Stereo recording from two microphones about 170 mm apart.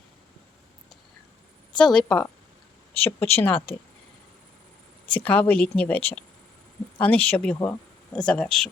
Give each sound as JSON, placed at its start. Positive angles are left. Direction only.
{"t": 1.8, "sound": "a woman's voice", "side_deg": 5}
{"t": 5.1, "sound": "speech", "side_deg": 10}